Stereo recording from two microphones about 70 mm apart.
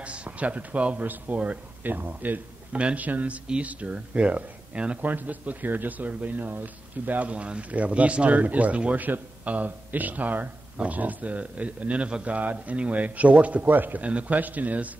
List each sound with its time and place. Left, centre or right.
0.0 s speech: centre